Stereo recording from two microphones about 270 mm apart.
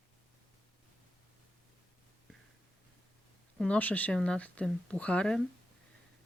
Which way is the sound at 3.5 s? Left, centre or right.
Centre.